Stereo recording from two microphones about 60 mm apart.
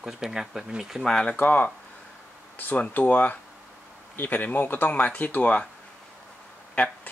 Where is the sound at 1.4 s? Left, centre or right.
Left.